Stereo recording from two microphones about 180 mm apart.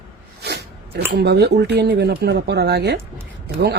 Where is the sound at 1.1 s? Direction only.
70° right (ahead or behind).